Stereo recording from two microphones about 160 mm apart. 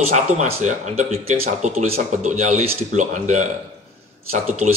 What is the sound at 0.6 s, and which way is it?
A man's voice, 45° right (ahead or behind).